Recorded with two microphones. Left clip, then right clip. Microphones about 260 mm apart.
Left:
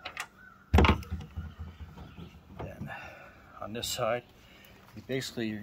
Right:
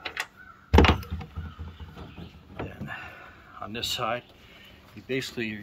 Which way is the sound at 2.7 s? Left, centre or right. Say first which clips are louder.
Right 4 dB; centre.